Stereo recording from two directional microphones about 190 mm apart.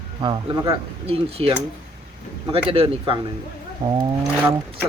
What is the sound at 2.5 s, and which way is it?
A man's voice, 30° right (ahead or behind).